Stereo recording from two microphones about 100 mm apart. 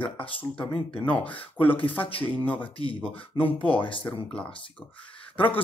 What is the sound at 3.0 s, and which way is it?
Speech, 15° left (ahead or behind).